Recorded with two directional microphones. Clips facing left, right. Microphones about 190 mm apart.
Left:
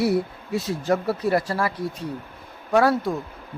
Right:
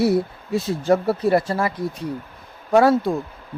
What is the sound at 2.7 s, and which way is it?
Speech, 25° right (ahead or behind).